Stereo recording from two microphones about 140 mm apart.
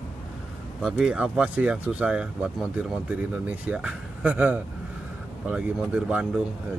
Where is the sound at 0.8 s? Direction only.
5° right (ahead or behind).